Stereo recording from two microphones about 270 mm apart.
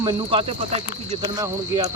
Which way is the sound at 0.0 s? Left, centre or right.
Centre.